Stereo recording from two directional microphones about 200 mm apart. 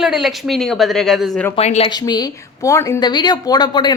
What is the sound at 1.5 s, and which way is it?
Speech, 30° left (ahead or behind).